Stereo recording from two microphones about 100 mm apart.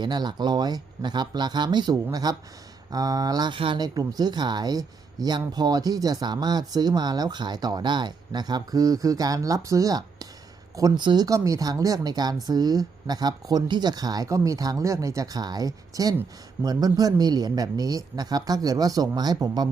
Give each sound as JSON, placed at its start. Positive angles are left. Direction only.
{"t": 0.0, "sound": "speech", "side_deg": -45}
{"t": 11.0, "sound": "speech", "side_deg": -50}
{"t": 11.3, "sound": "speech", "side_deg": -35}